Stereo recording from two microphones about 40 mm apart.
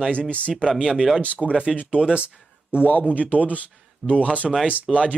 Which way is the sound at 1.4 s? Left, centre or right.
Centre.